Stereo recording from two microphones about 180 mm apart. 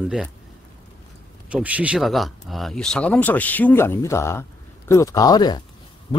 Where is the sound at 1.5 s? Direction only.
5° right (ahead or behind).